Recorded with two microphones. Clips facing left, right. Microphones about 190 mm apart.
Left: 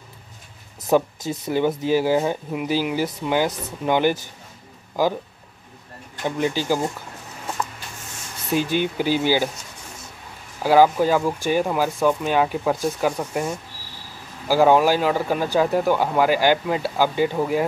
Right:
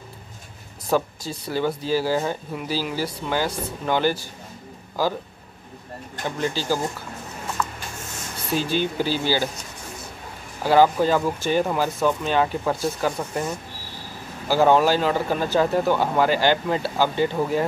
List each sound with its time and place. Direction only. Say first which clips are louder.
0.8 s speech: left 4 dB; 20° left (ahead or behind)
6.2 s speech: left 3 dB; 15° left (ahead or behind)
8.5 s speech: left 2 dB; 15° left (ahead or behind)
10.6 s speech: left 1 dB; 10° left (ahead or behind)